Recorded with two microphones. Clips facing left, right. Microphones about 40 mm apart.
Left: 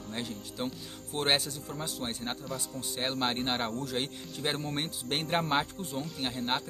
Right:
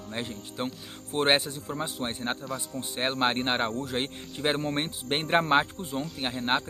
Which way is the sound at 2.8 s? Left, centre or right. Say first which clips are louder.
Right 5 dB; right.